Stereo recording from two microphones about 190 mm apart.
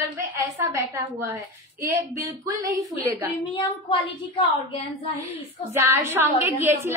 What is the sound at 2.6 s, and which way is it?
Speech, 15° right (ahead or behind).